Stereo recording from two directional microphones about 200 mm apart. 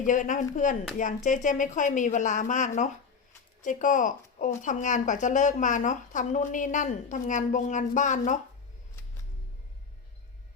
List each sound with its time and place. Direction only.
0.0 s a woman's voice: 40° left (ahead or behind)